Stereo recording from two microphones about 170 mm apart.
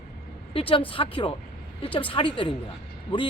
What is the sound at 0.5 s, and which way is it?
Speech, 30° left (ahead or behind).